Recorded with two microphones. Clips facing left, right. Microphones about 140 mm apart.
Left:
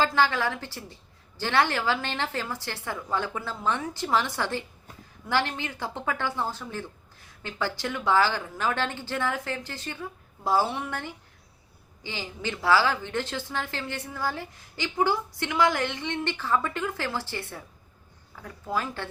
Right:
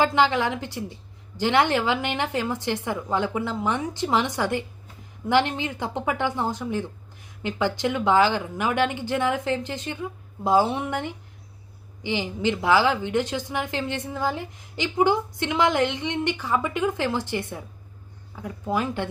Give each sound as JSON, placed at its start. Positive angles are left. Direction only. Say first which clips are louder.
{"t": 0.0, "sound": "speech", "louder": "right 3 dB", "side_deg": -20}